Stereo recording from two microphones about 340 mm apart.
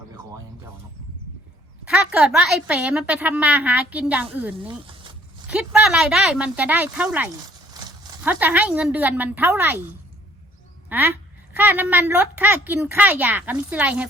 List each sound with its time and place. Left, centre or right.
1.8 s a woman's voice: centre
10.8 s a woman's voice: centre